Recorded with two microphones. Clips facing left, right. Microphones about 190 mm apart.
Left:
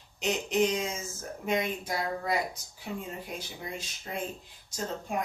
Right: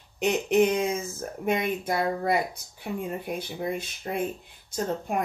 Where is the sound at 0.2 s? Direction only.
60° right (ahead or behind).